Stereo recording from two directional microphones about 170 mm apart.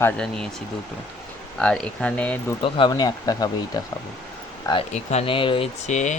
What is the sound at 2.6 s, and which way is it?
Speech, 30° left (ahead or behind).